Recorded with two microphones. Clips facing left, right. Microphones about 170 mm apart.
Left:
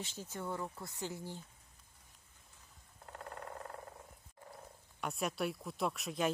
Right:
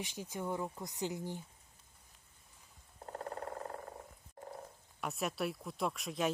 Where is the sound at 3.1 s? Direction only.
35° right (ahead or behind).